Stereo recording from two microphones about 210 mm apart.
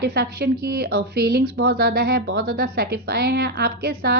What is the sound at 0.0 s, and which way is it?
Speech, 45° right (ahead or behind).